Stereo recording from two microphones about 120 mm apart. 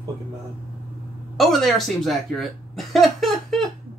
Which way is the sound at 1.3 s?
Centre (ahead or behind).